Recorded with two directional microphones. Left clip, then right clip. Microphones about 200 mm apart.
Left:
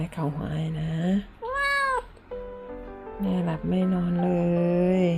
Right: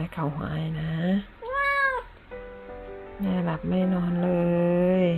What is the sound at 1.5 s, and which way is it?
Cat, 30° left (ahead or behind).